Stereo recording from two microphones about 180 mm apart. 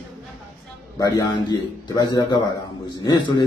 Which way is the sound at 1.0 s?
20° left (ahead or behind).